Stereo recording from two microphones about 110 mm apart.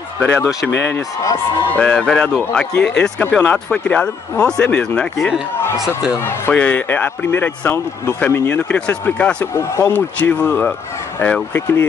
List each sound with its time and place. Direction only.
1.8 s speech: 10° left (ahead or behind)
6.5 s speech: 15° left (ahead or behind)
9.5 s speech: 25° left (ahead or behind)